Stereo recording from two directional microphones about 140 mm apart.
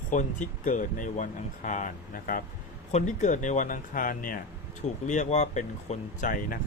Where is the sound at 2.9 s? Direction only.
60° left (ahead or behind); by 4.4 s 90° left.